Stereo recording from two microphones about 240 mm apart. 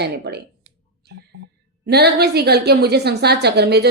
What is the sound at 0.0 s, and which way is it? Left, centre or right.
Speech, right.